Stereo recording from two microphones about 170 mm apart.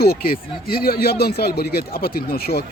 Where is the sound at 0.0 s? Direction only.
65° left (ahead or behind).